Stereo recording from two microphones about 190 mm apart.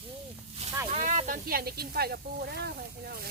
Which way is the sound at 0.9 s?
40° right (ahead or behind).